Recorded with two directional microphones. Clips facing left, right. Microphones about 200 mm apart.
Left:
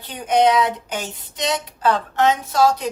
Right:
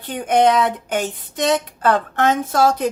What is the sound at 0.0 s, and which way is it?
Speech, 50° right (ahead or behind).